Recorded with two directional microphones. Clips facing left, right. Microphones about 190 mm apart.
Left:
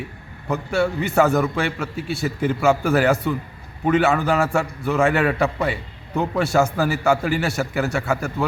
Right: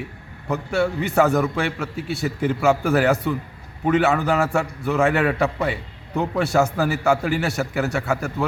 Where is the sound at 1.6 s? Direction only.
15° right (ahead or behind).